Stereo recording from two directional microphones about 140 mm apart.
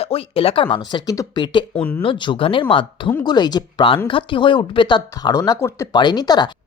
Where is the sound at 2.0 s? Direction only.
35° left (ahead or behind).